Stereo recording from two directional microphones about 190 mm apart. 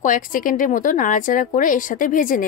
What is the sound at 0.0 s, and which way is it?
A woman's voice, 45° left (ahead or behind).